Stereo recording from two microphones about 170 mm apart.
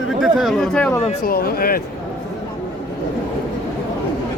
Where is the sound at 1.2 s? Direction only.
65° left (ahead or behind).